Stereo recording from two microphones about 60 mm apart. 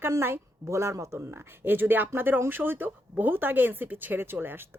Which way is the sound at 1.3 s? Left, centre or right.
Right.